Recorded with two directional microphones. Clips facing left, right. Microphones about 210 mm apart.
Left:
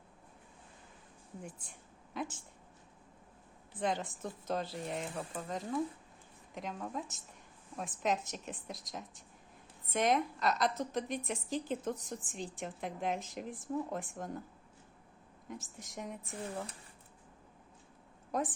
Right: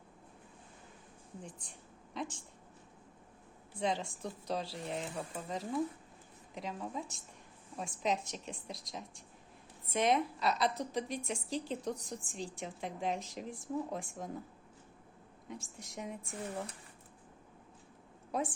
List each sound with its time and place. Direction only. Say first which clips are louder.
1.4 s a woman's voice: left 2 dB; 5° left (ahead or behind)
3.8 s a woman's voice: even; centre (ahead or behind)
15.4 s a woman's voice: even; centre (ahead or behind)
18.3 s a woman's voice: left 1 dB; centre (ahead or behind)